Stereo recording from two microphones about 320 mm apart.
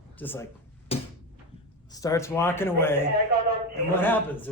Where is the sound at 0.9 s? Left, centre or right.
Centre.